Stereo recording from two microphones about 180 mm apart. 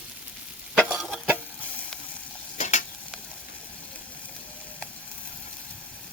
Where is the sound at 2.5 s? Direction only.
40° left (ahead or behind).